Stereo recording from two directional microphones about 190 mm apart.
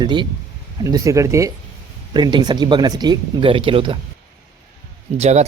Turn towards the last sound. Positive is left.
turn(degrees=-35)  # may be behind; listen again after turning